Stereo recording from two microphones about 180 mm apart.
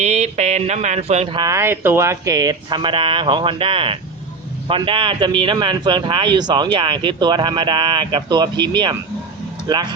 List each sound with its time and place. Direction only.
0.0 s speech: 40° right (ahead or behind)